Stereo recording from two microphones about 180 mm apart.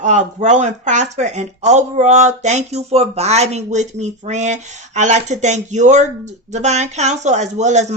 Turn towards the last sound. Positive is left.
turn(degrees=-40)  # may be behind; listen again after turning